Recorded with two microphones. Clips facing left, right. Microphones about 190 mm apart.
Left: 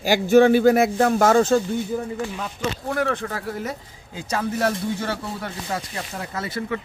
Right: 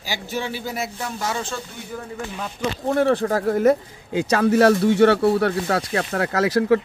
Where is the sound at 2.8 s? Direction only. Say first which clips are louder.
Right 7 dB; 30° right (ahead or behind); by 6.8 s 75° right (ahead or behind).